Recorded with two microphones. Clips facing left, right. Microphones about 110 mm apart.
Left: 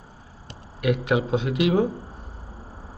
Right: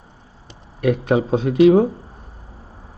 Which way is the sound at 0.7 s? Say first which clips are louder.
Right 5 dB; 35° right (ahead or behind).